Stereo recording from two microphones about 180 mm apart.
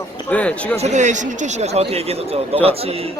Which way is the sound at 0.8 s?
40° right (ahead or behind).